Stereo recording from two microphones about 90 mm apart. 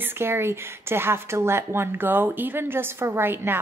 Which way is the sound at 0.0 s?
25° right (ahead or behind).